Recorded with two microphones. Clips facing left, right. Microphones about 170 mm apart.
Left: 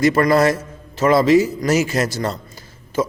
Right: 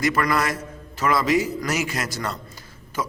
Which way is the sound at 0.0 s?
25° left (ahead or behind).